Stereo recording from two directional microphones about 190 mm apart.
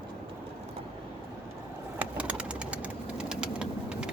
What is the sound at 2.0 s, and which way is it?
Bird, 5° right (ahead or behind).